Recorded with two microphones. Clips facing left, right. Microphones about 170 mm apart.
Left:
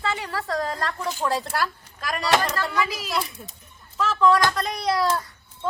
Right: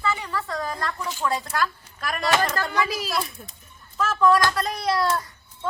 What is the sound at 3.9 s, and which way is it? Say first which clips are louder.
Speech: even; 5° right (ahead or behind).